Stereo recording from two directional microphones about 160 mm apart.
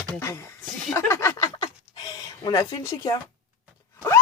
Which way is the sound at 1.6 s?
30° left (ahead or behind).